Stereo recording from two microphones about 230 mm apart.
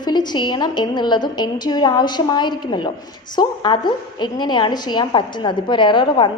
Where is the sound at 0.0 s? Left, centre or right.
Centre.